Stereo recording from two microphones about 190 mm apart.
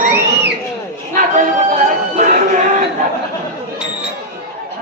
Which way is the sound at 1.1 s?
40° right (ahead or behind).